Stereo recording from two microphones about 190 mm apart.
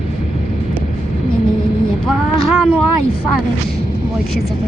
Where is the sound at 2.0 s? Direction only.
Centre (ahead or behind).